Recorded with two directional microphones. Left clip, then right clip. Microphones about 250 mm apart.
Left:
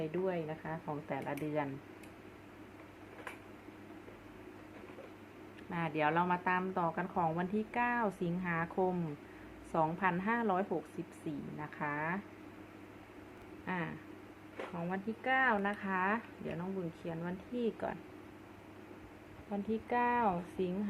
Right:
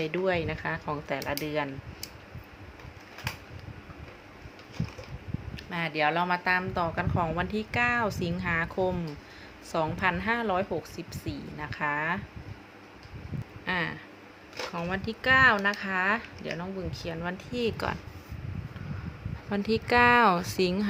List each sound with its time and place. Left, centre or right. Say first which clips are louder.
0.1 s a woman's voice: right 9 dB; right
5.7 s a woman's voice: right 6 dB; centre
13.7 s speech: right 10 dB; centre
19.5 s speech: right 10 dB; right